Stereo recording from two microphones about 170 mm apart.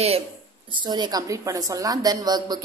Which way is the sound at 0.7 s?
25° right (ahead or behind).